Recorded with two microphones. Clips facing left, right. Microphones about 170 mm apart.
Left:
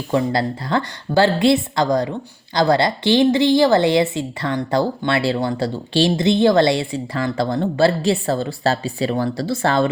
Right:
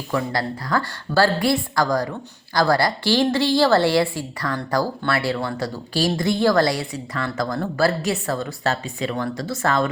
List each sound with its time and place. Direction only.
0.1 s speech: 25° left (ahead or behind)